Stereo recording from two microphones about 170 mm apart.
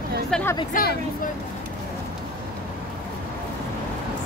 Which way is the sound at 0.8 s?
55° left (ahead or behind).